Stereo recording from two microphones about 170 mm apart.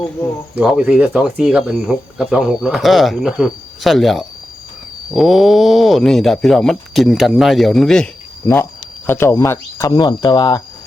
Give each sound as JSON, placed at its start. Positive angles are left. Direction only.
{"t": 0.5, "sound": "speech", "side_deg": -5}
{"t": 9.0, "sound": "speech", "side_deg": 15}